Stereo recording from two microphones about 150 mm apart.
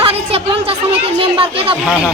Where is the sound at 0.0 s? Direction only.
40° right (ahead or behind).